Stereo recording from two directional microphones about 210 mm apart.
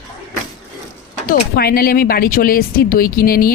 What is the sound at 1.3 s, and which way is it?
Speech, 45° left (ahead or behind).